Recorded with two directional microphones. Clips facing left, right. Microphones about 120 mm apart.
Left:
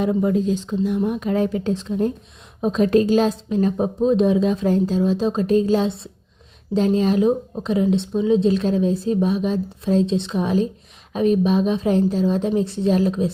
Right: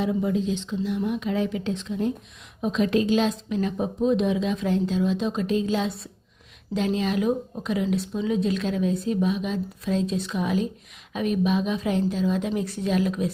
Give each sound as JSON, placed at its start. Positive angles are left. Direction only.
{"t": 0.0, "sound": "speech", "side_deg": 50}